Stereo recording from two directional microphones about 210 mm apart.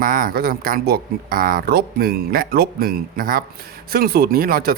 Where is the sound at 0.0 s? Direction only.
45° right (ahead or behind).